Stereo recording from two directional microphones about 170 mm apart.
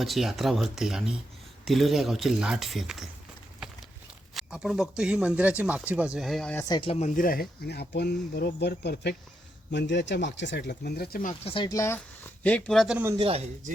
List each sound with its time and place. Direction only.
0.0 s speech: centre (ahead or behind)
4.4 s speech: 5° right (ahead or behind)
6.7 s speech: 30° left (ahead or behind); by 9.1 s 70° left (ahead or behind)
9.7 s speech: 90° left; by 11.3 s 55° left (ahead or behind)
11.4 s speech: 30° left (ahead or behind)
12.4 s speech: 10° left (ahead or behind)
13.1 s speech: 30° right (ahead or behind)